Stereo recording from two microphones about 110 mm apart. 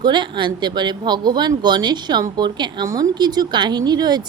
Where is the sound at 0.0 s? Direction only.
45° right (ahead or behind).